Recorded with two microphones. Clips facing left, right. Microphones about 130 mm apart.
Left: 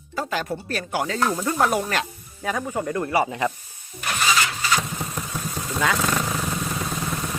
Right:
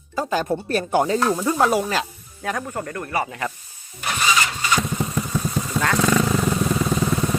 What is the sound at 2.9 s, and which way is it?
Speech, 20° left (ahead or behind).